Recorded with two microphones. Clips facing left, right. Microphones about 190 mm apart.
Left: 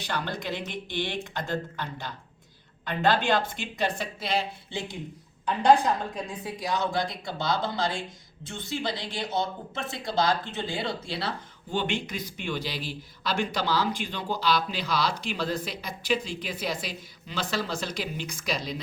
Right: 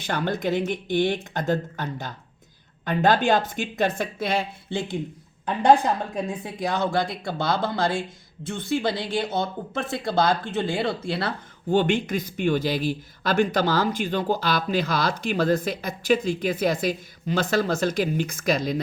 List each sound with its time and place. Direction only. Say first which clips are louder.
0.0 s speech: right 7 dB; 50° right (ahead or behind)
6.6 s speech: right 4 dB; 55° right (ahead or behind)